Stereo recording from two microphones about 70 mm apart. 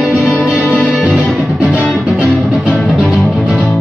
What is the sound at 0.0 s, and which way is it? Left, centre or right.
Music, centre.